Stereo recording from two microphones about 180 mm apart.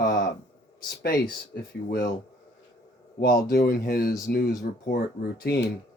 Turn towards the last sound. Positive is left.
turn(degrees=60)  # may be behind; listen again after turning